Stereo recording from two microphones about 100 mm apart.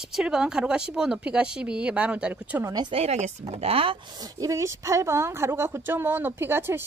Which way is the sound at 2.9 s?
80° right.